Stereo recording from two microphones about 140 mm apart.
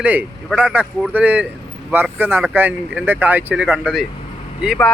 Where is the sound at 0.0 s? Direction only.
10° right (ahead or behind).